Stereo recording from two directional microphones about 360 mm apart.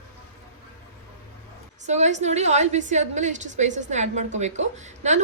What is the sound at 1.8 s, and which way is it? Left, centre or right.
A woman's voice, centre.